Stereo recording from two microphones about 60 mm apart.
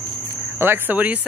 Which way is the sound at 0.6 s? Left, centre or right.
Right.